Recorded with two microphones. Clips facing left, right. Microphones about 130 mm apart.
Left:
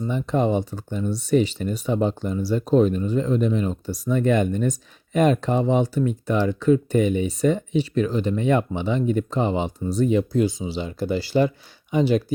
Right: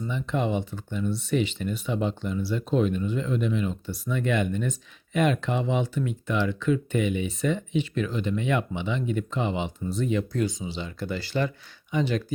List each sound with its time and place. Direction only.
0.0 s speech: 40° left (ahead or behind)